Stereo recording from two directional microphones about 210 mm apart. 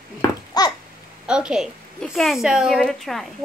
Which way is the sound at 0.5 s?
20° left (ahead or behind).